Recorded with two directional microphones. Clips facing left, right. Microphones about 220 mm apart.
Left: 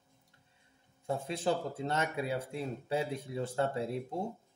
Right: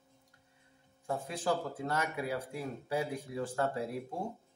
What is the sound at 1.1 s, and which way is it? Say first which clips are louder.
Speech: left 1 dB; 25° left (ahead or behind).